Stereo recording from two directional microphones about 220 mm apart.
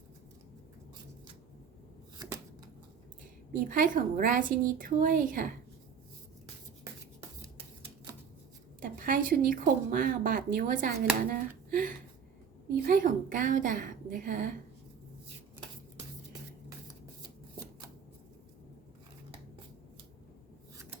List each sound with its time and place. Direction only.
3.5 s speech: 40° right (ahead or behind)
8.8 s speech: 40° right (ahead or behind)